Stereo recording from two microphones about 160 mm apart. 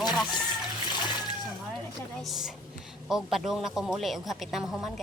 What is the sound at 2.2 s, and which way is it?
Speech, centre (ahead or behind).